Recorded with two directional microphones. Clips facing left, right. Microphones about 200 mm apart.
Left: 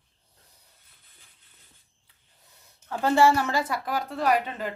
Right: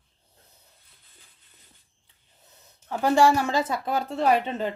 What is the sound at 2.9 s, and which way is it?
Speech, 15° right (ahead or behind).